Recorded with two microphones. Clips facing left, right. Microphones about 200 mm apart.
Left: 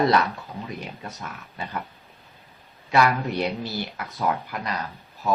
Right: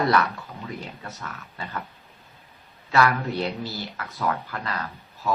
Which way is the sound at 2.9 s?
15° left (ahead or behind).